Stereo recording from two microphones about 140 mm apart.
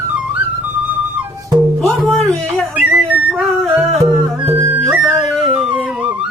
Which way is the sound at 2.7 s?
10° right (ahead or behind).